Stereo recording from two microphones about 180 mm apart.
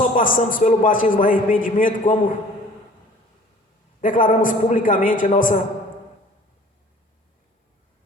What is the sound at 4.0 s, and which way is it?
A man's voice, 50° left (ahead or behind).